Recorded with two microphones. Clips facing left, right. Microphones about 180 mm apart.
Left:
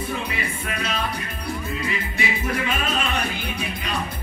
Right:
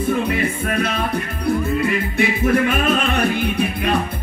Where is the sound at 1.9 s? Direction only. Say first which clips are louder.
Right 8 dB; 55° right (ahead or behind).